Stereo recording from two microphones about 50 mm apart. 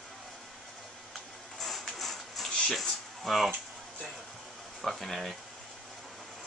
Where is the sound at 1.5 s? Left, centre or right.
Centre.